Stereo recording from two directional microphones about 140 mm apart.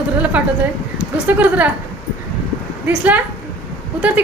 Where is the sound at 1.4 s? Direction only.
10° right (ahead or behind).